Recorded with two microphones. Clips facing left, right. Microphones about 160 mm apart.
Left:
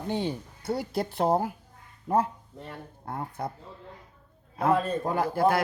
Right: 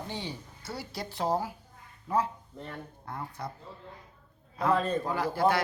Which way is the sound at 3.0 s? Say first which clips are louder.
Left 6 dB; 50° left (ahead or behind).